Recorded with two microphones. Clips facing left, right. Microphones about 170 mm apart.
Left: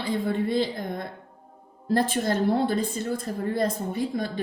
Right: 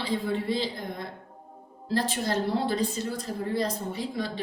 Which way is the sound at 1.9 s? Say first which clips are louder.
Left 3 dB; 50° left (ahead or behind).